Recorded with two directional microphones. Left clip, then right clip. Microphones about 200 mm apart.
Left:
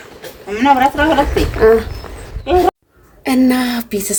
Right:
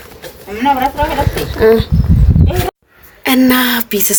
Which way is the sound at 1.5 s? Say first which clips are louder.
Right 1 dB; 40° right (ahead or behind).